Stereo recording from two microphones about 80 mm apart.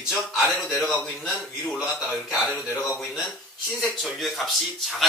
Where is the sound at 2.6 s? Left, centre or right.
Left.